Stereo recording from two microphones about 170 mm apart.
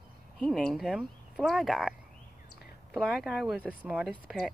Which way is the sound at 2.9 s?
Centre (ahead or behind).